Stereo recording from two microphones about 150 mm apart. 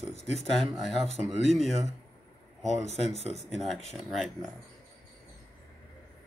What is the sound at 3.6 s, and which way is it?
Speech, centre (ahead or behind).